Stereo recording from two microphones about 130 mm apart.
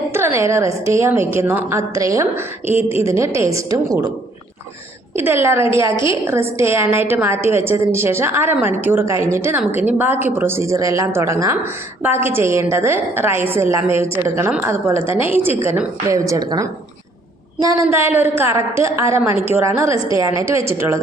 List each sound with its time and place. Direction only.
0.1 s a woman's voice: 20° right (ahead or behind)
5.1 s a woman's voice: 20° right (ahead or behind)